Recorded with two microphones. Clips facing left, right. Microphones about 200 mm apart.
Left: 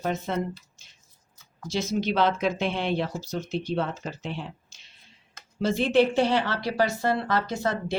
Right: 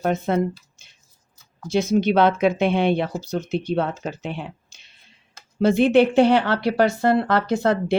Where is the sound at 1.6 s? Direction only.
55° right (ahead or behind).